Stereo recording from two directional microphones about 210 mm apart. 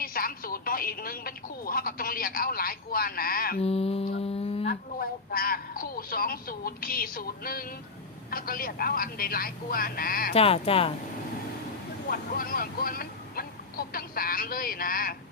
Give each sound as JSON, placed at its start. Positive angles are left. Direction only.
{"t": 0.0, "sound": "music", "side_deg": 45}
{"t": 3.6, "sound": "speech", "side_deg": 30}
{"t": 4.2, "sound": "a sound", "side_deg": 30}
{"t": 4.6, "sound": "a woman's voice", "side_deg": 45}
{"t": 10.3, "sound": "speech", "side_deg": 25}
{"t": 12.0, "sound": "speech", "side_deg": 45}